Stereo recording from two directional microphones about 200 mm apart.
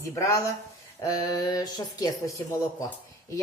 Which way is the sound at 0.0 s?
15° left (ahead or behind).